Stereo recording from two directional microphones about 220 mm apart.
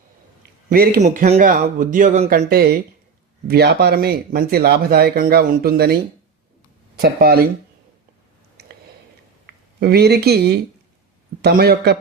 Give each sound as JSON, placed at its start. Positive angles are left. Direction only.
{"t": 0.7, "sound": "speech", "side_deg": -45}
{"t": 1.0, "sound": "speech", "side_deg": -35}
{"t": 9.8, "sound": "speech", "side_deg": -45}